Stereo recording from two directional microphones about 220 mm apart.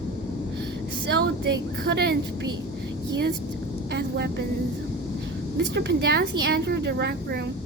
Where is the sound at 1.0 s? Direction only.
50° right (ahead or behind).